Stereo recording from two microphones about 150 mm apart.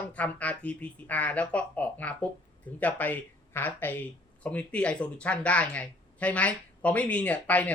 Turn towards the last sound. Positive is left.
turn(degrees=10)  # may be behind; listen again after turning